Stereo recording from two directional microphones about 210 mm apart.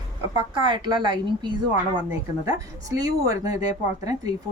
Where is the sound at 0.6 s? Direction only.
20° right (ahead or behind).